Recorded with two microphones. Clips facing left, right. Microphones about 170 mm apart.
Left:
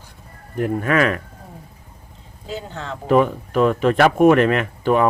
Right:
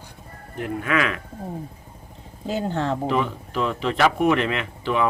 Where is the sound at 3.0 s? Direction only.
50° left (ahead or behind).